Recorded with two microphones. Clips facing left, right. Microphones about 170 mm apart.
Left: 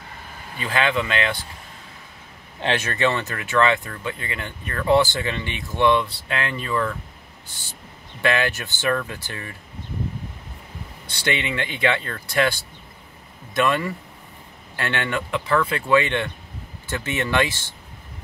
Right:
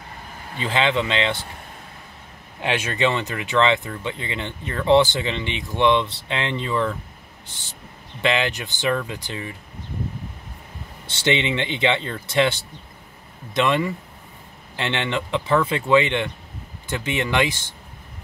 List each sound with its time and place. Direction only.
0.6 s speech: 25° right (ahead or behind)
2.6 s speech: 10° right (ahead or behind)
8.2 s speech: 20° right (ahead or behind)
11.1 s speech: 25° right (ahead or behind)